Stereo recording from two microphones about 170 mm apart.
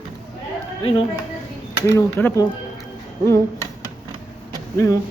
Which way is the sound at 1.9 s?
15° left (ahead or behind).